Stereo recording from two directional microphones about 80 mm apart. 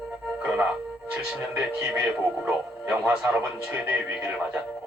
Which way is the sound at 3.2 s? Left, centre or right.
Centre.